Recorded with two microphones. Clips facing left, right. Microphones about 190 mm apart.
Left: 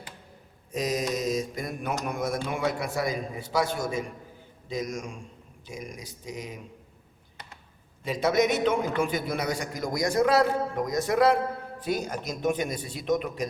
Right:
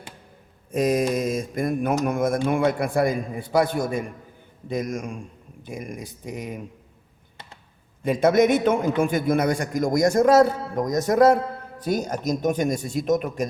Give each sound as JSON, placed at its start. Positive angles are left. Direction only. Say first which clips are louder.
{"t": 0.7, "sound": "mantra", "louder": "right 7 dB", "side_deg": -55}
{"t": 4.7, "sound": "speech", "louder": "right 5 dB", "side_deg": -55}
{"t": 8.0, "sound": "mantra", "louder": "right 6 dB", "side_deg": -55}